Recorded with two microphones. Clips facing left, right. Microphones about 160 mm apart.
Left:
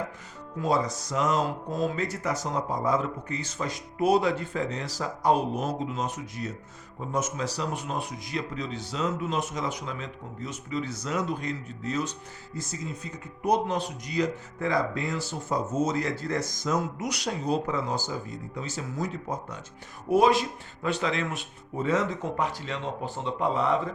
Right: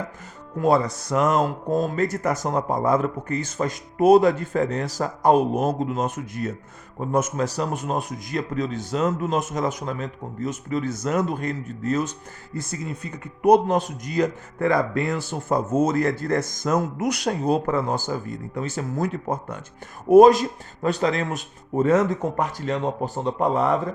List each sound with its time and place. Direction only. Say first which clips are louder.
0.6 s speech: right 6 dB; 60° right (ahead or behind)
12.5 s speech: right 5 dB; 60° right (ahead or behind)